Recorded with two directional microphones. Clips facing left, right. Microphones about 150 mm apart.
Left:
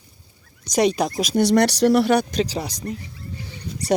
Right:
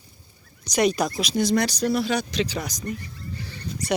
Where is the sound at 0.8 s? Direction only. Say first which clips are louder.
Left 2 dB; 25° left (ahead or behind).